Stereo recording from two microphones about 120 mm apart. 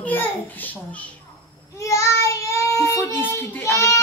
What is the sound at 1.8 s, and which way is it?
Child singing, 25° left (ahead or behind).